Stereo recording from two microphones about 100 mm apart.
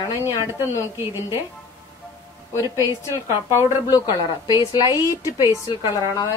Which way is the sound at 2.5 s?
25° right (ahead or behind).